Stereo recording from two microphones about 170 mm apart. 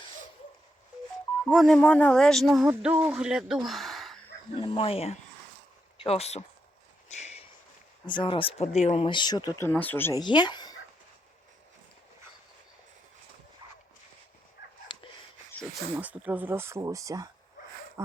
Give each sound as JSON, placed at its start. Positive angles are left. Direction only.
{"t": 1.5, "sound": "speech", "side_deg": 0}
{"t": 2.6, "sound": "speech", "side_deg": -10}
{"t": 4.5, "sound": "speech", "side_deg": 30}
{"t": 7.1, "sound": "a sound", "side_deg": 40}
{"t": 8.0, "sound": "speech", "side_deg": 30}
{"t": 10.2, "sound": "speech", "side_deg": 25}
{"t": 14.9, "sound": "a sound", "side_deg": 25}
{"t": 16.0, "sound": "speech", "side_deg": -10}